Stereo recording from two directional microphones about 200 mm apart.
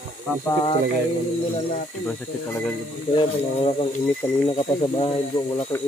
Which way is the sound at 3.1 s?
25° left (ahead or behind).